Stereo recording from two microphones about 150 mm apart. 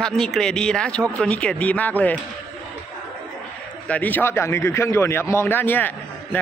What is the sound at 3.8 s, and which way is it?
A man's voice, 10° left (ahead or behind).